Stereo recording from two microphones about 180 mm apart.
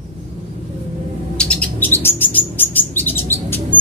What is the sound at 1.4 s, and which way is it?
Bird, 5° left (ahead or behind).